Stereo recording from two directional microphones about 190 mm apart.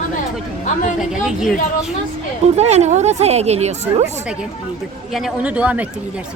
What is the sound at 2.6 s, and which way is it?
A woman's voice, 35° right (ahead or behind).